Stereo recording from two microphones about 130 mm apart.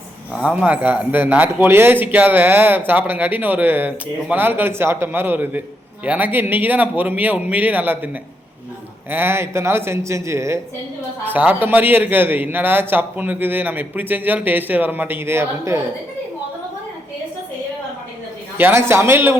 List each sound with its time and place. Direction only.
0.3 s a man's voice: 10° right (ahead or behind)
18.5 s a man's voice: 15° right (ahead or behind)